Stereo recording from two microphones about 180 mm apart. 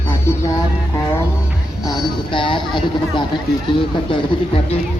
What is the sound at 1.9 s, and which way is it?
Speech, 25° left (ahead or behind).